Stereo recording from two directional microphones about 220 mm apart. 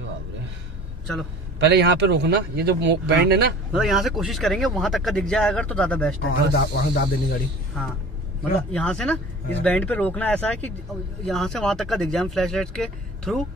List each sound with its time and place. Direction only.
1.6 s speech: 50° right (ahead or behind)
3.7 s speech: centre (ahead or behind)
6.5 s speech: 45° left (ahead or behind)
8.7 s speech: 5° left (ahead or behind)